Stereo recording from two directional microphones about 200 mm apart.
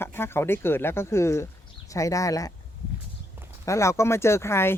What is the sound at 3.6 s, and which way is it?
Speech, 15° left (ahead or behind).